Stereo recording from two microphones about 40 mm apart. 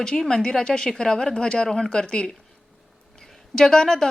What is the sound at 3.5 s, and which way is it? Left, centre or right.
Speech, centre.